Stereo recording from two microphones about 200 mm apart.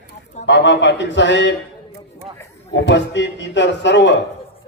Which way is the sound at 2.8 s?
60° left (ahead or behind).